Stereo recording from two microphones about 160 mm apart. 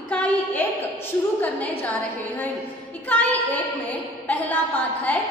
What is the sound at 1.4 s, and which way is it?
Speech, 10° left (ahead or behind).